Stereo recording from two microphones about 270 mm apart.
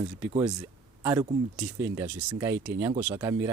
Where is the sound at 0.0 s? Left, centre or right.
Centre.